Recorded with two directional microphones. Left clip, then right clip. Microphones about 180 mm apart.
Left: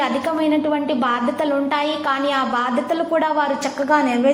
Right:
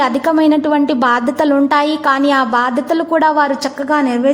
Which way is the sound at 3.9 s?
25° right (ahead or behind).